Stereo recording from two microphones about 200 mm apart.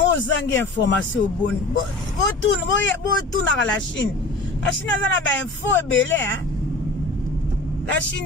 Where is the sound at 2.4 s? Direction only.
70° left (ahead or behind).